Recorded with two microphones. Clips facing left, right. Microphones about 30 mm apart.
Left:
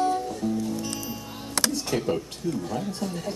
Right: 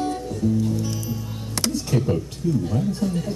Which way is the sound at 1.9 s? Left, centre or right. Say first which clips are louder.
Right 3 dB; centre.